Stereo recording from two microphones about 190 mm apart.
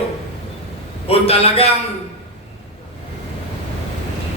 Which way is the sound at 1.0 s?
30° left (ahead or behind).